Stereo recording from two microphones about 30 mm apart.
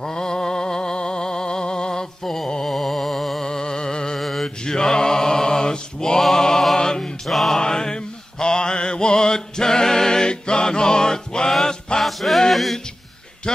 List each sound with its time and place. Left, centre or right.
0.0 s music: left
2.6 s music: centre
3.4 s music: left
4.2 s mantra: centre
4.6 s mantra: left
6.3 s a sound: centre
7.2 s music: centre
7.6 s mantra: left
12.0 s music: centre